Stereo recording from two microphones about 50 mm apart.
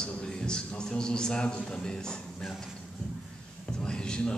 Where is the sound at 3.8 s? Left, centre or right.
Centre.